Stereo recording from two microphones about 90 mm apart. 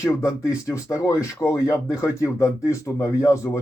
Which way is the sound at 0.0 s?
35° left (ahead or behind).